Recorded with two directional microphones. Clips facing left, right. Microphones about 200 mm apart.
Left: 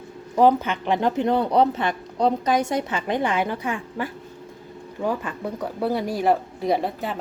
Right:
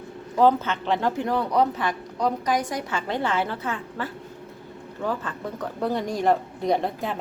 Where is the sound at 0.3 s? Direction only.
15° left (ahead or behind).